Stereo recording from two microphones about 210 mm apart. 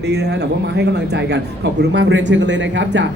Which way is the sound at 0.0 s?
55° right (ahead or behind).